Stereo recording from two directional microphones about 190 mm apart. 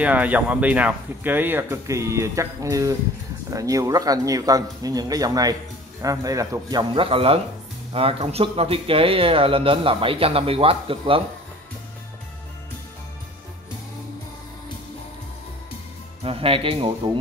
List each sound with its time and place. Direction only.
0.0 s speech: 10° right (ahead or behind); by 11.2 s 30° right (ahead or behind)
16.3 s speech: 30° right (ahead or behind)